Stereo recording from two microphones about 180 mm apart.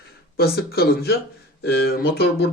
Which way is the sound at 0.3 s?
60° left (ahead or behind).